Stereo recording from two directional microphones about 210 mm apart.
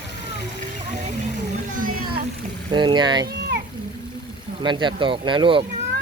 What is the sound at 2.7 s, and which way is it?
Speech, 20° right (ahead or behind).